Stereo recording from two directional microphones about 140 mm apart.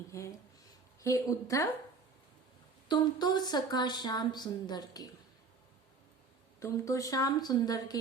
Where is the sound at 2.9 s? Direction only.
30° left (ahead or behind).